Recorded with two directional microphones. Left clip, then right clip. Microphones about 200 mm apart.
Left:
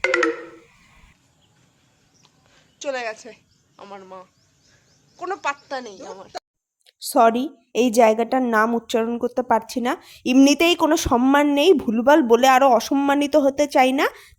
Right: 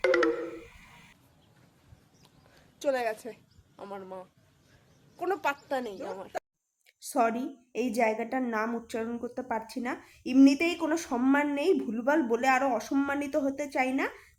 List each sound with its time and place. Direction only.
0.0 s telephone dialing: 5° right (ahead or behind)
2.2 s a sound: 5° right (ahead or behind)
5.1 s a woman's voice: 5° right (ahead or behind)
6.8 s a woman's voice: 30° left (ahead or behind)